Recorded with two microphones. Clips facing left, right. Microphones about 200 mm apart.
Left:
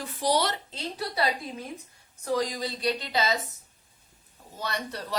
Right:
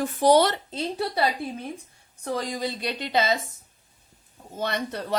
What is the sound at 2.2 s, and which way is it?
Speech, 55° right (ahead or behind).